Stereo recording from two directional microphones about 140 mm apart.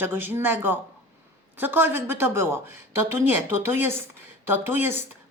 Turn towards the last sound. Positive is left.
turn(degrees=-15)  # may be behind; listen again after turning